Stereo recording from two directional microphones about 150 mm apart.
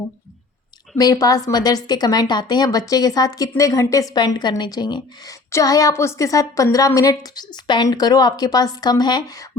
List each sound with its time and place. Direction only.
0.9 s speech: 25° left (ahead or behind)